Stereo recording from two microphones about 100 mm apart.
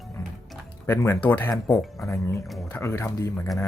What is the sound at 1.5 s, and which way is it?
A man's voice, 35° left (ahead or behind).